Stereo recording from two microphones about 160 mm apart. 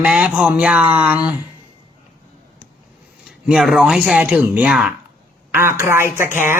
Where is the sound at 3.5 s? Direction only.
5° right (ahead or behind).